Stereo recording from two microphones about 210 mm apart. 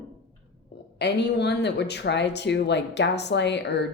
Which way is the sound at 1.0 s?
55° left (ahead or behind).